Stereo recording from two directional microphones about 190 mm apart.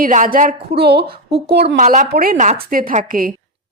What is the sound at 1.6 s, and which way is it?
A woman's voice, 40° right (ahead or behind).